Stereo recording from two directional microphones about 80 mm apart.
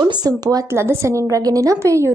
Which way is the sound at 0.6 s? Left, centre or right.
Right.